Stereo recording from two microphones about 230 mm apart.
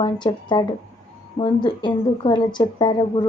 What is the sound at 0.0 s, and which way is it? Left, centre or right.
A woman's voice, centre.